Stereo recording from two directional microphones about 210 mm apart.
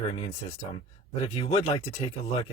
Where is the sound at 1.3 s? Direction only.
30° left (ahead or behind).